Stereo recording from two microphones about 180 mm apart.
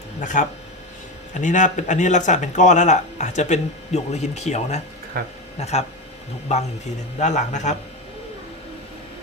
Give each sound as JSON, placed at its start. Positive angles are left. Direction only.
{"t": 0.2, "sound": "speech", "side_deg": 45}
{"t": 5.2, "sound": "speech", "side_deg": -60}
{"t": 5.5, "sound": "speech", "side_deg": 35}
{"t": 7.2, "sound": "speech", "side_deg": 40}